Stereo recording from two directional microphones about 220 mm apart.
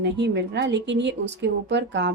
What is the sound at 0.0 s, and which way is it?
A woman's voice, 50° right (ahead or behind).